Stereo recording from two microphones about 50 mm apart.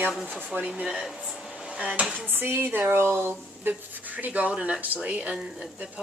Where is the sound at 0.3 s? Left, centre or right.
Left.